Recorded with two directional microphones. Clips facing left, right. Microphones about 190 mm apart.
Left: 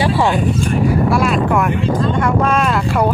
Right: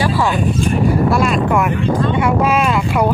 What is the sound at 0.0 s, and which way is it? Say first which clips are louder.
Speech: left 1 dB; 25° left (ahead or behind).